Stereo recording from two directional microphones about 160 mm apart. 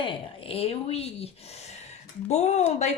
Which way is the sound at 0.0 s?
35° left (ahead or behind).